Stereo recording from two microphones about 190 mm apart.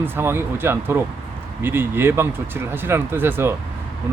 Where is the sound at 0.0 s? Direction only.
10° right (ahead or behind).